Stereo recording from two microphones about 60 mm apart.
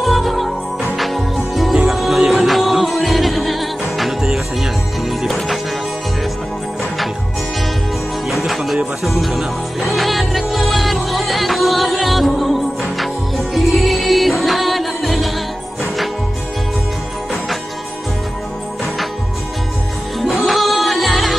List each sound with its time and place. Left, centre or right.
0.0 s music: centre
8.3 s music: centre
20.2 s music: centre